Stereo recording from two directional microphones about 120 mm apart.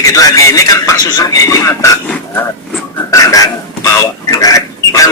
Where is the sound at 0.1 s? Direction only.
30° left (ahead or behind).